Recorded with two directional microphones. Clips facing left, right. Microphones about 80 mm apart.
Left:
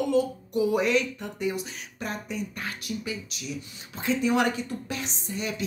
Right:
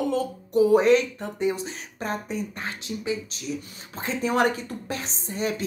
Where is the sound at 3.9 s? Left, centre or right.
Right.